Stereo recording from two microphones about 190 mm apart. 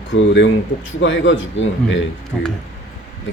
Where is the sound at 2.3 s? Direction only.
Centre (ahead or behind).